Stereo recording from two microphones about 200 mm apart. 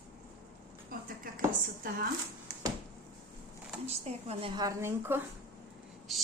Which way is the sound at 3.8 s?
30° right (ahead or behind).